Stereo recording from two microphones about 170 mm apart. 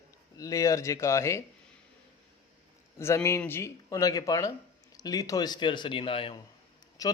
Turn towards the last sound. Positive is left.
turn(degrees=20)  # may be behind; listen again after turning